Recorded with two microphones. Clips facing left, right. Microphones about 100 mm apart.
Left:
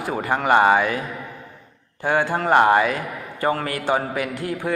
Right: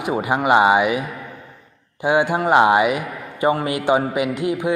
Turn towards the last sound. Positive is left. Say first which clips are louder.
# right 5 dB
turn(degrees=-15)  # may be behind; listen again after turning